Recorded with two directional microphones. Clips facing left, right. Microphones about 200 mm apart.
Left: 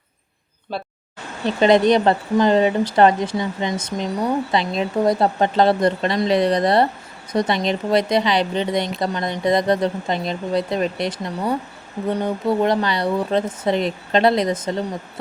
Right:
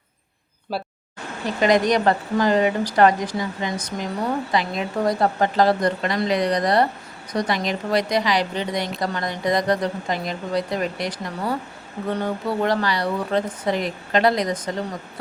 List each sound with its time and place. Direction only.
0.7 s speech: 5° right (ahead or behind)
1.5 s speech: 25° left (ahead or behind)